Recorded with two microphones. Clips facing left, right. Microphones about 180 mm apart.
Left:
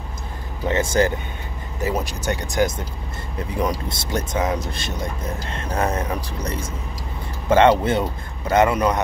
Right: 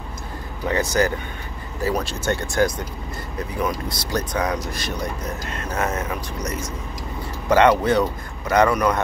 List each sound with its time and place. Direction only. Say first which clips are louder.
0.7 s speech: left 1 dB; 25° left (ahead or behind)
3.5 s speech: left 2 dB; 25° left (ahead or behind)